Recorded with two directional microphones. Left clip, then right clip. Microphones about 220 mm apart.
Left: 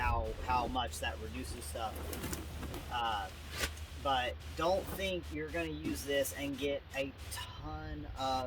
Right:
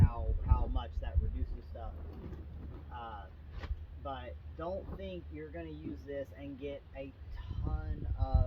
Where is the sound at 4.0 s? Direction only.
15° left (ahead or behind).